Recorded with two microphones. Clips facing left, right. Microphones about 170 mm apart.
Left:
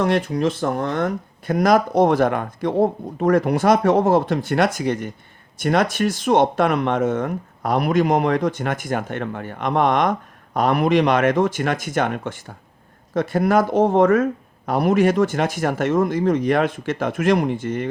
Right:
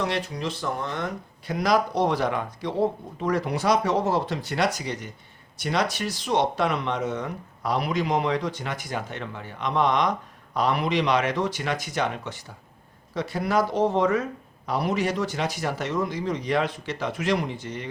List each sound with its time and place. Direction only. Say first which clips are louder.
0.0 s speech: left 9 dB; 50° left (ahead or behind)